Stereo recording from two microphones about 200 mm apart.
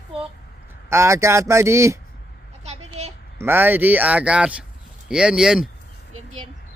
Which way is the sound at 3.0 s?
35° right (ahead or behind).